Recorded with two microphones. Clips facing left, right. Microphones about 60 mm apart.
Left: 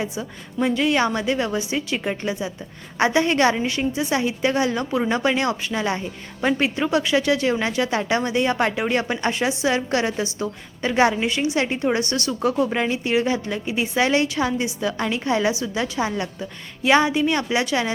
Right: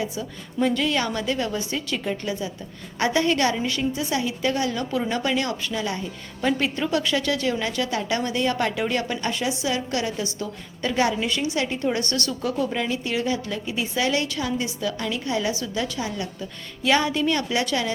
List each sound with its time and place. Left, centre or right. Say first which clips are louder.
0.6 s a woman's voice: left 3 dB; centre; by 6.1 s left
6.4 s a woman's voice: left 3 dB; left
12.4 s a woman's voice: left 6 dB; left
16.8 s a woman's voice: left 3 dB; left